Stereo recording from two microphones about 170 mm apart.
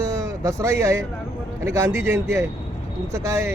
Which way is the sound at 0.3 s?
15° right (ahead or behind).